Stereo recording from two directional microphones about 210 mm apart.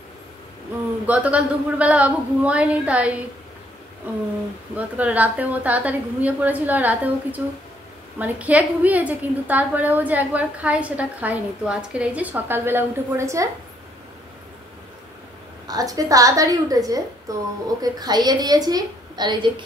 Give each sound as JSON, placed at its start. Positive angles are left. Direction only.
{"t": 1.0, "sound": "a woman's voice", "side_deg": -5}
{"t": 4.7, "sound": "a woman's voice", "side_deg": -5}
{"t": 15.6, "sound": "a woman's voice", "side_deg": -15}